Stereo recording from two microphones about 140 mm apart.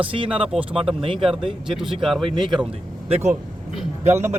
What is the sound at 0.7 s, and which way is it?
Speech, 40° right (ahead or behind).